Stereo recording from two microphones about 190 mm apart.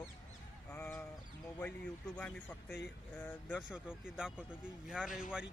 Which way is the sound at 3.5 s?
5° right (ahead or behind).